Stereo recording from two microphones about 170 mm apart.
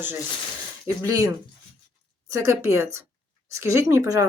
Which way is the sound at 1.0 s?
20° right (ahead or behind).